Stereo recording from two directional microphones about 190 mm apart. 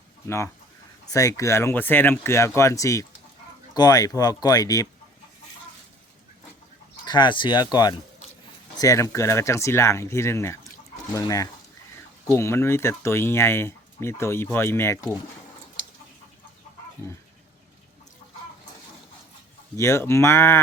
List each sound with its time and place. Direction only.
0.3 s speech: 10° left (ahead or behind)
7.0 s speech: 25° left (ahead or behind)
19.7 s speech: 15° left (ahead or behind)